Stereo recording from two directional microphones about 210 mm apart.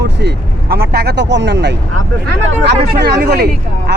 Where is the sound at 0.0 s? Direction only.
55° right (ahead or behind).